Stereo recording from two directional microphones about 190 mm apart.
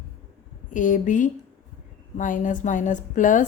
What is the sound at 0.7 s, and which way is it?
A woman's voice, 45° left (ahead or behind).